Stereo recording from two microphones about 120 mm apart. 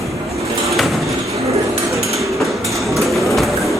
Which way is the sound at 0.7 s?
Centre (ahead or behind).